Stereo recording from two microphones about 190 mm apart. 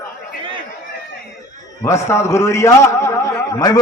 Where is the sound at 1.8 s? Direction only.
15° left (ahead or behind).